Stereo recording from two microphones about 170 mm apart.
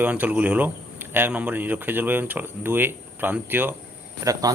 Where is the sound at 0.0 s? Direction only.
10° right (ahead or behind).